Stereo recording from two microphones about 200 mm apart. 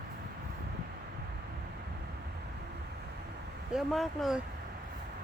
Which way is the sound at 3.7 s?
Centre (ahead or behind).